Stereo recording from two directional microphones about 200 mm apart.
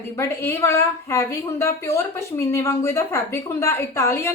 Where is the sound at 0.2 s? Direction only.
15° left (ahead or behind).